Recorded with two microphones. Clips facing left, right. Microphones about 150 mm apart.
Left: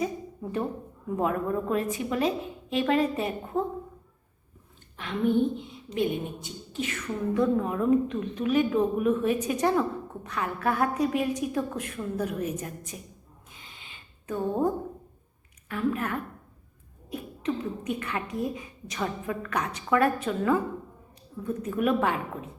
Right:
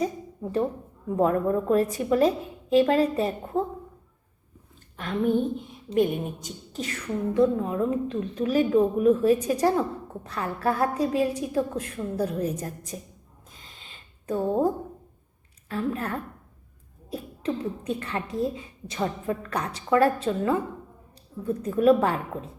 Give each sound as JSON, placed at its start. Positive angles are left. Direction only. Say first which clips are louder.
{"t": 1.1, "sound": "a woman's voice", "louder": "right 4 dB", "side_deg": -40}
{"t": 4.9, "sound": "a woman's voice", "louder": "even", "side_deg": -45}
{"t": 13.8, "sound": "a sound", "louder": "right 5 dB", "side_deg": -35}
{"t": 15.7, "sound": "a woman's voice", "louder": "even", "side_deg": -35}